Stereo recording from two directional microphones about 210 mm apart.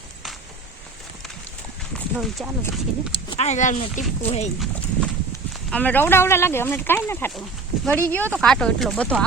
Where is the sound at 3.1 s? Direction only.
25° left (ahead or behind).